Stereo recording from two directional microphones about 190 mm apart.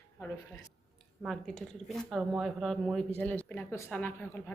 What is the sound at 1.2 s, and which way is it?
A woman's voice, centre (ahead or behind).